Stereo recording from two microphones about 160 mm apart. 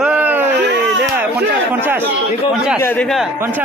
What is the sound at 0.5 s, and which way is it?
Speech, 90° right.